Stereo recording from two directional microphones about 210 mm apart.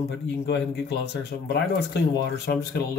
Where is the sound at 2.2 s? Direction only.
50° left (ahead or behind).